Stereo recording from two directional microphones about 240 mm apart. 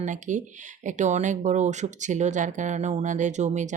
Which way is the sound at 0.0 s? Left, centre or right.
Right.